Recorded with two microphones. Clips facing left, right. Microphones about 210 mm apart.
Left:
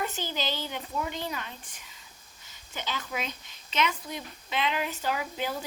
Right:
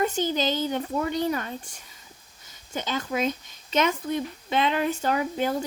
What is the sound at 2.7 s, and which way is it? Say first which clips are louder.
Speech: right 7 dB; 45° right (ahead or behind).